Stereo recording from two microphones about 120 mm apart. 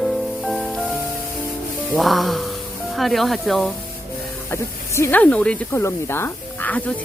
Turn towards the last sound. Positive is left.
turn(degrees=15)  # may be behind; listen again after turning